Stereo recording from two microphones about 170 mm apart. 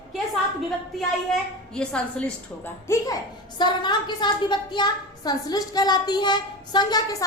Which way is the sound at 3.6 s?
25° left (ahead or behind).